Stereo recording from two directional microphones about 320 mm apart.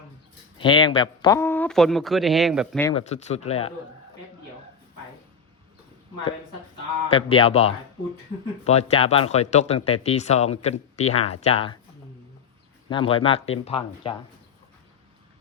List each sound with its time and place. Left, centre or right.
0.6 s speech: centre
2.8 s speech: centre
7.1 s speech: centre
12.9 s speech: centre